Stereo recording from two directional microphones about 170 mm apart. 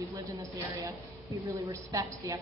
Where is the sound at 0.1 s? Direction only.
20° right (ahead or behind).